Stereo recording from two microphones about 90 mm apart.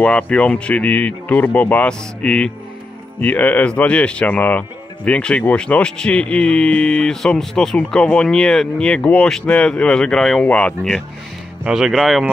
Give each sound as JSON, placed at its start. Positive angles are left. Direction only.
{"t": 0.0, "sound": "speech", "side_deg": 15}
{"t": 11.7, "sound": "speech", "side_deg": 0}